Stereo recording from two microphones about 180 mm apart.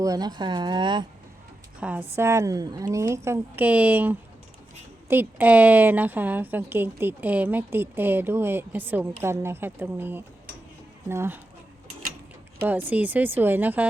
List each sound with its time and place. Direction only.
0.0 s speech: 20° right (ahead or behind)
1.8 s a woman's voice: 10° right (ahead or behind)
12.6 s a woman's voice: 10° right (ahead or behind)